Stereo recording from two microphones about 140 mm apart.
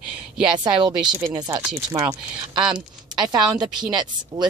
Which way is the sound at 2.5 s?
30° right (ahead or behind).